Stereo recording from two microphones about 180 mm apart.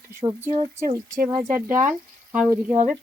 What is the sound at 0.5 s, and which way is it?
Speech, 30° right (ahead or behind).